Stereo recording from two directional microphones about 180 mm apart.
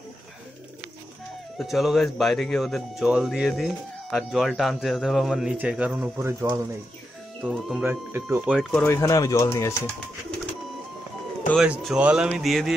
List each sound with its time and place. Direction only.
1.6 s speech: centre (ahead or behind)
7.4 s speech: centre (ahead or behind)
8.1 s speech: 10° right (ahead or behind)
8.5 s speech: centre (ahead or behind)
8.8 s speech: 15° left (ahead or behind)
11.5 s speech: 5° right (ahead or behind)